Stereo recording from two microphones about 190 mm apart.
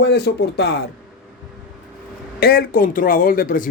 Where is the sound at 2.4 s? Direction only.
50° left (ahead or behind).